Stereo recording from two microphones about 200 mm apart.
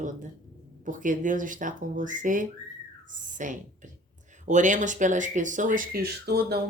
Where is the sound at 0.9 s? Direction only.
40° right (ahead or behind).